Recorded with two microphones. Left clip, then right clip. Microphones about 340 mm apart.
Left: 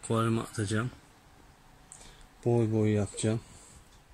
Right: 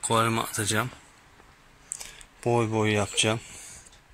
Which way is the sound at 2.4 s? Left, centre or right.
Right.